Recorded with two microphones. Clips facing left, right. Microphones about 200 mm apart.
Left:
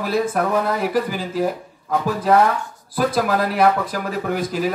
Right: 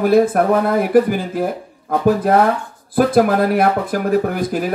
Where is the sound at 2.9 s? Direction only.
55° right (ahead or behind).